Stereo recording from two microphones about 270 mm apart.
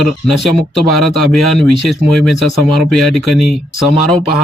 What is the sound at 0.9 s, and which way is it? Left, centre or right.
Speech, left.